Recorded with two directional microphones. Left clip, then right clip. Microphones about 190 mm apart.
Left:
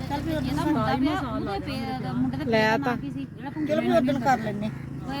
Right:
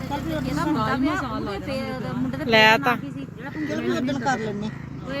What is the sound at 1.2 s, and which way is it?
Speech, 50° right (ahead or behind).